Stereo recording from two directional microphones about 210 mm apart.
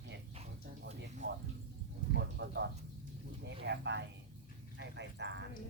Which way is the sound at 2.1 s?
55° right (ahead or behind).